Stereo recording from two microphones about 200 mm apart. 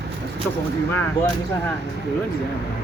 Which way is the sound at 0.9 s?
10° left (ahead or behind).